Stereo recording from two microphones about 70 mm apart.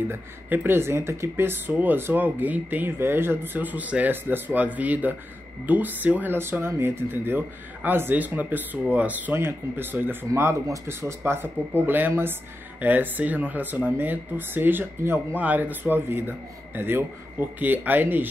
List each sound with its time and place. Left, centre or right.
0.1 s speech: right